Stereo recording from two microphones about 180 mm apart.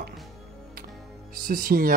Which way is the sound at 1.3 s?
50° right (ahead or behind).